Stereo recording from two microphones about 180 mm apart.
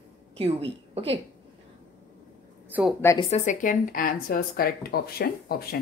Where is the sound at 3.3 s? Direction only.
45° left (ahead or behind); by 5.8 s 60° left (ahead or behind).